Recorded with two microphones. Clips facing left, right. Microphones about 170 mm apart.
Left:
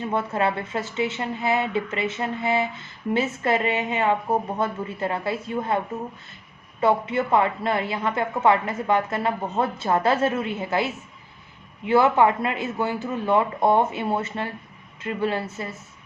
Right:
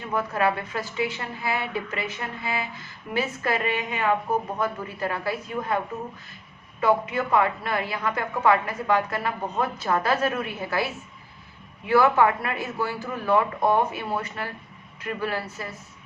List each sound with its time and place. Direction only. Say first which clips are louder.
0.1 s a woman's voice: right 1 dB; 25° left (ahead or behind)